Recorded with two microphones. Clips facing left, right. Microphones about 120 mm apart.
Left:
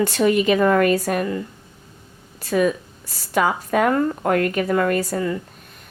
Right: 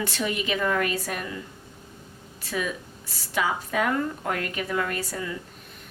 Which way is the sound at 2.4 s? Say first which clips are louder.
Left 11 dB; 45° left (ahead or behind).